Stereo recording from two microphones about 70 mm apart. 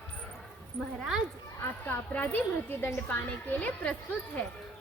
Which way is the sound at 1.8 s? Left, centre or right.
Left.